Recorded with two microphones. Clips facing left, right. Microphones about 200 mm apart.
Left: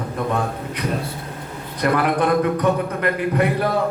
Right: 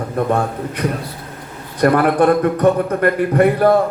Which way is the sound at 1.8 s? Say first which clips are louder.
Right 6 dB; 50° right (ahead or behind).